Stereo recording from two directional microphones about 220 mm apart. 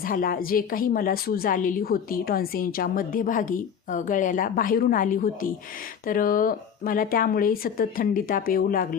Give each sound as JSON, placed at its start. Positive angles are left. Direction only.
{"t": 0.0, "sound": "a woman's voice", "side_deg": 40}